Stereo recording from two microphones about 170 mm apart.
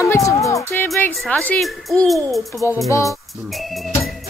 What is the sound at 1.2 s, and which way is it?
A child's voice, 5° left (ahead or behind).